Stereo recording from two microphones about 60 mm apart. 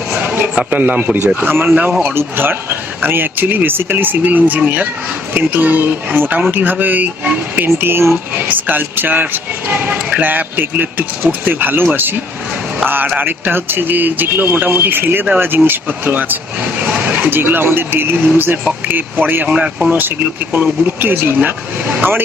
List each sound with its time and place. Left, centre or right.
0.1 s a sound: right
1.4 s speech: right
19.5 s speech: centre
19.9 s speech: right